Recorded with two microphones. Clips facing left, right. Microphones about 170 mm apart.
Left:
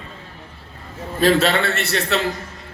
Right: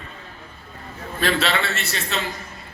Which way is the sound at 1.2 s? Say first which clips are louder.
Left 6 dB; 45° left (ahead or behind).